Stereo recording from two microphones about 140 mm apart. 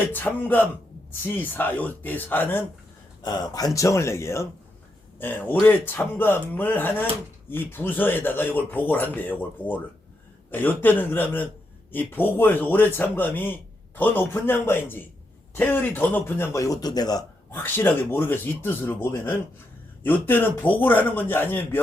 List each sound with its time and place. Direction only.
0.0 s a man's voice: 15° left (ahead or behind)
3.2 s a man's voice: 30° left (ahead or behind)
17.5 s a man's voice: 15° left (ahead or behind)